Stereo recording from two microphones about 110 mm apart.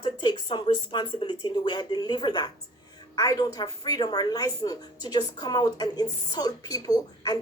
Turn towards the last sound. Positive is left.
turn(degrees=35)  # may be behind; listen again after turning